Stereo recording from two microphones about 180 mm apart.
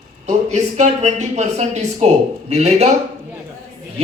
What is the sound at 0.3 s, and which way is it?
A man's voice, 40° right (ahead or behind).